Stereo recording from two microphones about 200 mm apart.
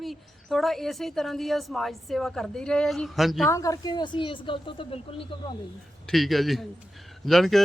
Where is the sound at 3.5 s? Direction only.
15° left (ahead or behind).